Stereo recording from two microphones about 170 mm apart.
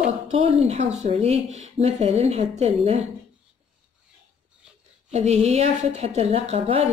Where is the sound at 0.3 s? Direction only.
40° right (ahead or behind).